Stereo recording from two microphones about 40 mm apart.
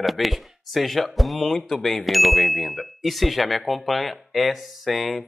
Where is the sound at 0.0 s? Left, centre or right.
Centre.